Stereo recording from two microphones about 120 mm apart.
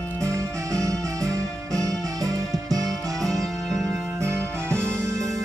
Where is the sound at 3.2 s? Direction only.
Centre (ahead or behind).